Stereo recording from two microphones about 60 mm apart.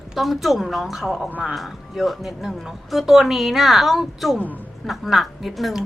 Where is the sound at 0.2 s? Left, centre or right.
Centre.